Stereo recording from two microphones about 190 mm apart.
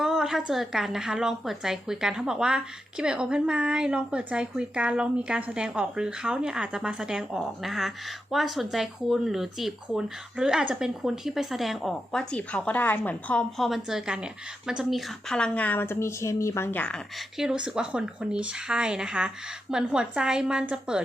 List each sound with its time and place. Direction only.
0.0 s a woman's voice: centre (ahead or behind)